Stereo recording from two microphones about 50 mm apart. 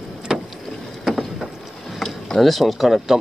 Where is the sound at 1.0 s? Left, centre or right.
Centre.